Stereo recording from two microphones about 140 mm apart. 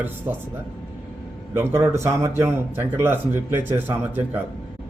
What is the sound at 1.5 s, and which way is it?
Speech, 20° right (ahead or behind).